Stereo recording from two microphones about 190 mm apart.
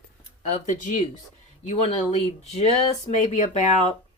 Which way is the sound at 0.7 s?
40° left (ahead or behind).